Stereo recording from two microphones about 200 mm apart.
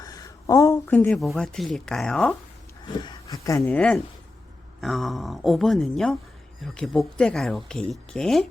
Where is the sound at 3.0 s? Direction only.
15° left (ahead or behind).